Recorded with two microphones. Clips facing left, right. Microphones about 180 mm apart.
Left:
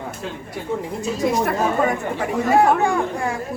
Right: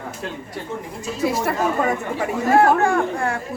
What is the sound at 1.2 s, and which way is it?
Speech, 5° right (ahead or behind).